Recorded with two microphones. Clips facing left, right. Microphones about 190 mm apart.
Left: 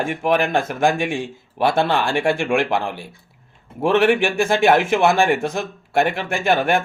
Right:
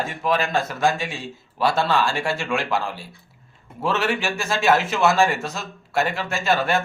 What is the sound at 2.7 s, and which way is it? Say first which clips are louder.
Speech: left 3 dB; 15° left (ahead or behind).